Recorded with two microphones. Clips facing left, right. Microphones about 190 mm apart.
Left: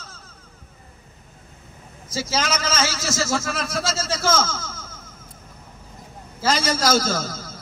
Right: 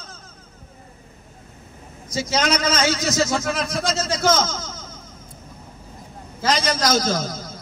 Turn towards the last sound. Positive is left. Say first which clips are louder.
# right 2 dB
turn(degrees=-15)  # may be behind; listen again after turning